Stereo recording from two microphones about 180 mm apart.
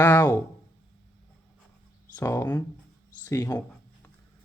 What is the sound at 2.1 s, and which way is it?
A man's voice, 15° left (ahead or behind).